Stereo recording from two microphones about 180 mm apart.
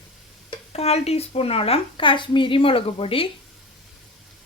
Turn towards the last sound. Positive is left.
turn(degrees=30)  # may be behind; listen again after turning